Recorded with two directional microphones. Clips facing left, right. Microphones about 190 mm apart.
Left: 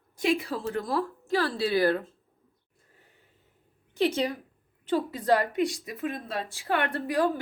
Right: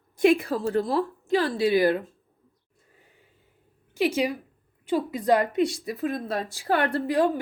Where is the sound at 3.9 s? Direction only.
10° right (ahead or behind).